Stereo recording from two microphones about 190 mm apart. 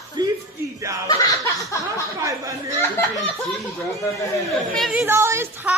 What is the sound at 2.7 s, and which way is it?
Speech, 10° left (ahead or behind).